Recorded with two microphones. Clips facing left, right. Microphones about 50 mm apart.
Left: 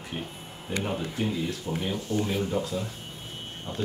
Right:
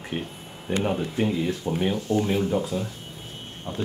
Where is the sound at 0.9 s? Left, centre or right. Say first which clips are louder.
Right 4 dB; right.